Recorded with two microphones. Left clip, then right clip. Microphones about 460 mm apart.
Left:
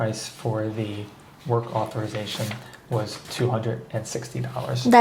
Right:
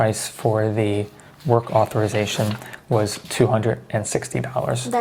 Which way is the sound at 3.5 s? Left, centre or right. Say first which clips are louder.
Right 6 dB; right.